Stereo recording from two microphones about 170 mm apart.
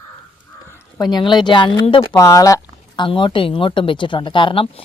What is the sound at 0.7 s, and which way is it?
Speech, 25° left (ahead or behind).